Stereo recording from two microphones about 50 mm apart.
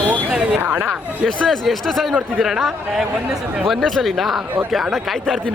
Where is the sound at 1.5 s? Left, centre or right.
Centre.